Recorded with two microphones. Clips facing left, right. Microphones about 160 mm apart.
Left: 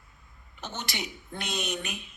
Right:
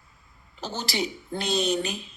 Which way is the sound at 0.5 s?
35° right (ahead or behind).